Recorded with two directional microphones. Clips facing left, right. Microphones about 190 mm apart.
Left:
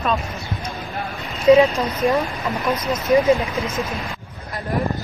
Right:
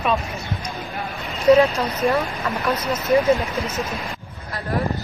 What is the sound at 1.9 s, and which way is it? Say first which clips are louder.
Speech: left 1 dB; 10° left (ahead or behind).